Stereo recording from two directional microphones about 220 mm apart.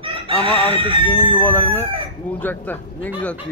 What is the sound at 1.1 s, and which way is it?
Speech, 10° left (ahead or behind).